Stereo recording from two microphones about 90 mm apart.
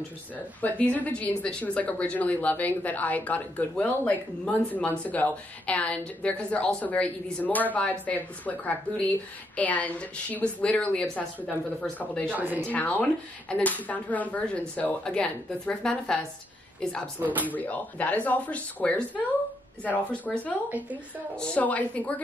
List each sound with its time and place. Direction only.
0.6 s speech: 20° left (ahead or behind)
12.3 s a woman's voice: 20° right (ahead or behind)
12.6 s speech: 15° left (ahead or behind)
17.2 s a woman's voice: 20° right (ahead or behind)
17.5 s speech: 15° left (ahead or behind)